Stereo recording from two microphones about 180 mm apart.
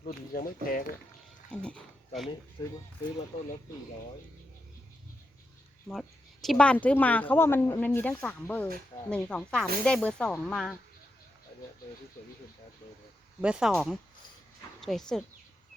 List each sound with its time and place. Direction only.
0.0 s speech: 50° left (ahead or behind)
1.5 s speech: 5° left (ahead or behind)
2.6 s speech: 25° left (ahead or behind)
5.9 s a woman's voice: centre (ahead or behind)
13.4 s speech: 5° right (ahead or behind)